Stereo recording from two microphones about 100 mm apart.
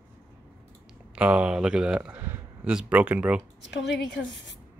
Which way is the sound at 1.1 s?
15° right (ahead or behind).